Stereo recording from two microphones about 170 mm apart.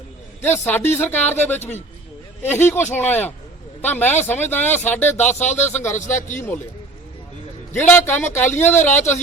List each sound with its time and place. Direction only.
0.4 s speech: 15° left (ahead or behind)
5.9 s speech: 45° left (ahead or behind)
7.8 s speech: 10° left (ahead or behind)
8.5 s speech: 45° left (ahead or behind)